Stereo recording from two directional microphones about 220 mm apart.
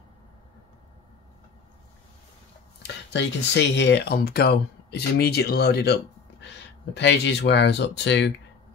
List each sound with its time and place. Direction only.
2.8 s speech: 50° left (ahead or behind)